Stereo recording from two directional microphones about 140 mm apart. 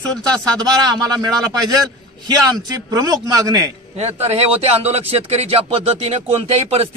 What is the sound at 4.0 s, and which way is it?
Speech, 50° right (ahead or behind).